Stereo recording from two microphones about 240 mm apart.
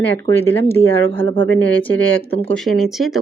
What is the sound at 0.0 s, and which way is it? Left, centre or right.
Speech, centre.